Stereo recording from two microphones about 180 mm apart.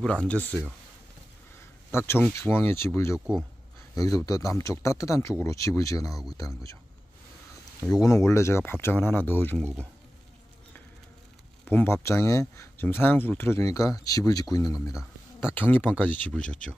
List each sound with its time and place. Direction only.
0.0 s speech: 5° left (ahead or behind)
1.9 s speech: 15° left (ahead or behind)
3.9 s speech: 20° left (ahead or behind)
7.9 s speech: 20° left (ahead or behind)
11.6 s speech: 10° left (ahead or behind)